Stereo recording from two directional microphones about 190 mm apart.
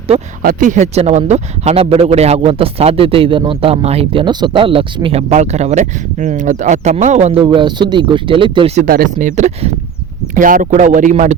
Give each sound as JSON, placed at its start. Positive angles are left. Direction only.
{"t": 0.4, "sound": "speech", "side_deg": -40}
{"t": 7.4, "sound": "speech", "side_deg": -25}
{"t": 8.9, "sound": "speech", "side_deg": -45}